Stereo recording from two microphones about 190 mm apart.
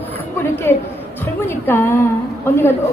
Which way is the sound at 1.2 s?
10° left (ahead or behind).